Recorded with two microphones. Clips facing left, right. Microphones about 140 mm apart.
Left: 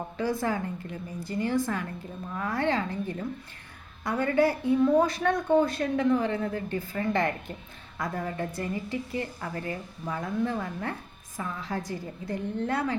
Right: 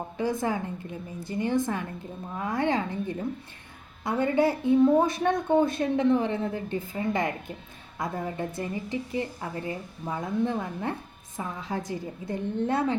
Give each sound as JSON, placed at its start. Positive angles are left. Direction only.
{"t": 0.2, "sound": "a woman's voice", "side_deg": -20}